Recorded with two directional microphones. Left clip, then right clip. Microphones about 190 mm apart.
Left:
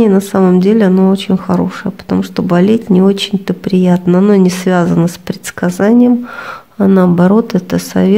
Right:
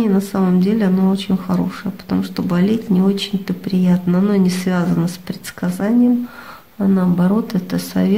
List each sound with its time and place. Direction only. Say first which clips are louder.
0.0 s speech: left 9 dB; 35° left (ahead or behind)